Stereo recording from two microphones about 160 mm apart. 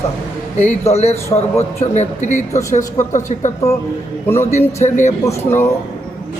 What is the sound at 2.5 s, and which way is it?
Speech, 20° left (ahead or behind).